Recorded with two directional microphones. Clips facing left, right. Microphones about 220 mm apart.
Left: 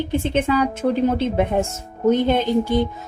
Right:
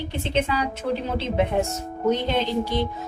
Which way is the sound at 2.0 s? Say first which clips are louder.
Left 6 dB; 50° left (ahead or behind).